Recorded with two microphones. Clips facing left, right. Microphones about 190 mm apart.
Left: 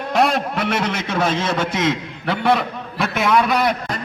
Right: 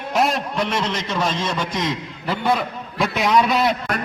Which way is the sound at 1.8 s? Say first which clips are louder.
Left 4 dB; 70° left (ahead or behind).